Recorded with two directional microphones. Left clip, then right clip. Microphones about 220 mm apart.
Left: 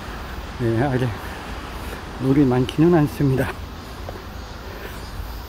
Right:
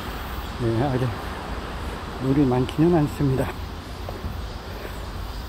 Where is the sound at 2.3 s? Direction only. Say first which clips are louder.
Left 3 dB; 25° left (ahead or behind).